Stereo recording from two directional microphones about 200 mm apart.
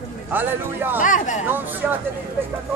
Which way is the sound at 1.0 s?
40° left (ahead or behind).